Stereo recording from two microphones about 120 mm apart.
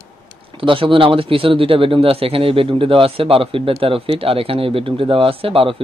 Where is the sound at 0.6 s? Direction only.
45° right (ahead or behind).